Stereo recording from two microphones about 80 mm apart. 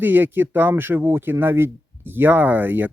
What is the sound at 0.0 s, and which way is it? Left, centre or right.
Speech, right.